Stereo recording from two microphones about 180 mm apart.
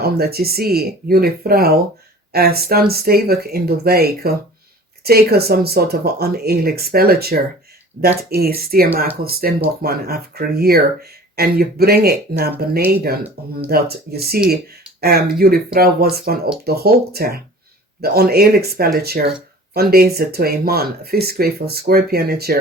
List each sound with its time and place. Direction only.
0.0 s speech: 60° right (ahead or behind)